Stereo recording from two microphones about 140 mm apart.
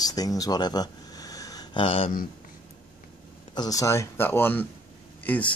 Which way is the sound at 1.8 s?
40° left (ahead or behind).